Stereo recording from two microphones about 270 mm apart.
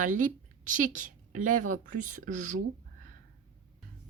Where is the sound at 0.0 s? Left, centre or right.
Right.